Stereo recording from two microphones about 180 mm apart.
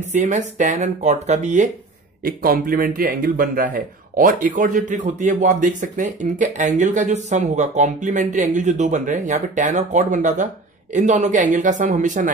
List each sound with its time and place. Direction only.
0.0 s speech: 40° right (ahead or behind)
2.2 s speech: 55° right (ahead or behind)